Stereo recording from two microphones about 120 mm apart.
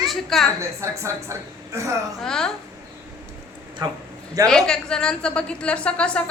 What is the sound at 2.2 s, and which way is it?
Speech, 5° left (ahead or behind).